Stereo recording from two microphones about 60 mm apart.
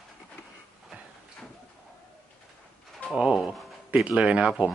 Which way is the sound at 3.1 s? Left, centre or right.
Centre.